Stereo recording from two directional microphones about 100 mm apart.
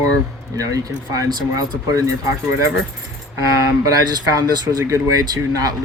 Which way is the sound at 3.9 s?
40° right (ahead or behind).